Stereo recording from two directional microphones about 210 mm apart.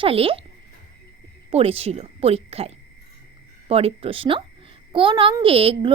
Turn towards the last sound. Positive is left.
turn(degrees=-25)  # may be behind; listen again after turning